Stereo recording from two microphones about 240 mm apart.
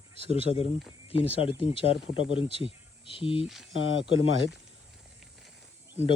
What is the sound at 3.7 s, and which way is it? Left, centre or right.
Speech, left.